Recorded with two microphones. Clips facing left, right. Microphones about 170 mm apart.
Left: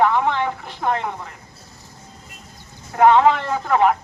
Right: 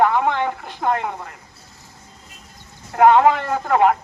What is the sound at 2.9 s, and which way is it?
Speech, 10° right (ahead or behind).